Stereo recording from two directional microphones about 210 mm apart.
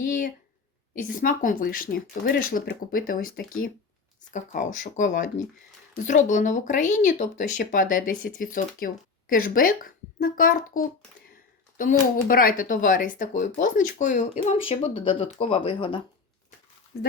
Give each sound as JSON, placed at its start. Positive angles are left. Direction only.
{"t": 0.0, "sound": "a sound", "side_deg": 40}
{"t": 1.1, "sound": "a child's voice", "side_deg": 40}
{"t": 16.9, "sound": "a child's voice", "side_deg": 50}